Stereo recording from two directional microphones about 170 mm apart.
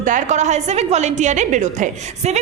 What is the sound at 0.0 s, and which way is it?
A woman's voice, 45° right (ahead or behind).